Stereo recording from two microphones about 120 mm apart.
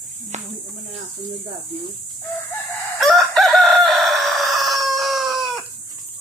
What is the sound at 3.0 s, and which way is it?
Chicken, centre (ahead or behind).